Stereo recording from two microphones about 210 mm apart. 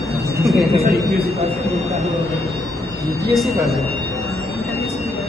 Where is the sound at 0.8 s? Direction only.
45° right (ahead or behind).